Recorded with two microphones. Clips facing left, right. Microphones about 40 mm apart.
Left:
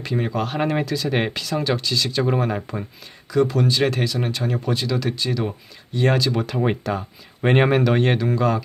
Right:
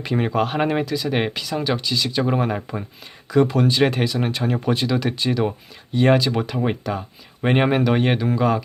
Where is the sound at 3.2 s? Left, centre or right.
Right.